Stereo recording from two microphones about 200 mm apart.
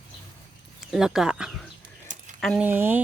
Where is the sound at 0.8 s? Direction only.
Centre (ahead or behind).